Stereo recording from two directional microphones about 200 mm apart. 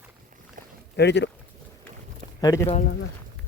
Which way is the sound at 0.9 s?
60° left (ahead or behind).